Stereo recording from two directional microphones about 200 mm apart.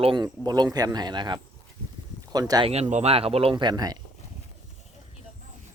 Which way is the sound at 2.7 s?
35° right (ahead or behind).